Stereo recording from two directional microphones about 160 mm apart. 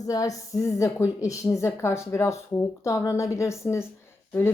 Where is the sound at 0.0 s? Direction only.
20° left (ahead or behind).